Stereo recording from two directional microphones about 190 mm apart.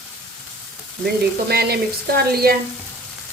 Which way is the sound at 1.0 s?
55° right (ahead or behind).